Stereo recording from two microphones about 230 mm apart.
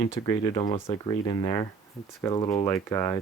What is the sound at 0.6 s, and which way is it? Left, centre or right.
Speech, left.